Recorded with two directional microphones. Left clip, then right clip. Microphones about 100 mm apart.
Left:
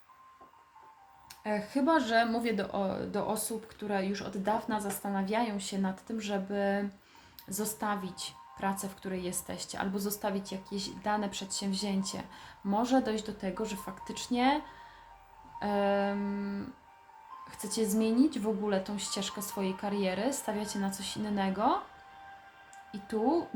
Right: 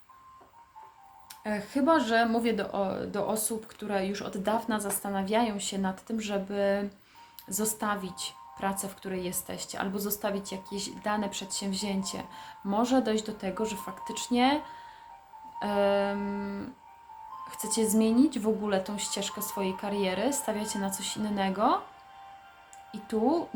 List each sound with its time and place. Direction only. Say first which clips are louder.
1.5 s a woman's voice: right 3 dB; 35° right (ahead or behind)
19.0 s a woman's voice: right 3 dB; 30° right (ahead or behind)
22.9 s speech: right 2 dB; 40° right (ahead or behind)